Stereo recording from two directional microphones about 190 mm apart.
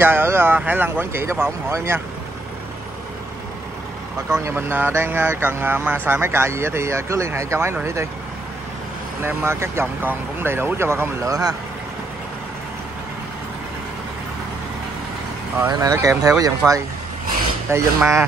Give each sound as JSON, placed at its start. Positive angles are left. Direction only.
{"t": 0.0, "sound": "speech", "side_deg": -10}
{"t": 4.3, "sound": "speech", "side_deg": -15}
{"t": 9.2, "sound": "speech", "side_deg": -15}
{"t": 15.6, "sound": "speech", "side_deg": -20}